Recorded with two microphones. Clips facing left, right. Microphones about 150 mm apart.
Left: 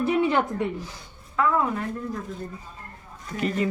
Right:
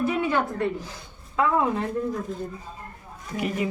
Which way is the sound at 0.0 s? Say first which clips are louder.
Left 2 dB; 30° left (ahead or behind).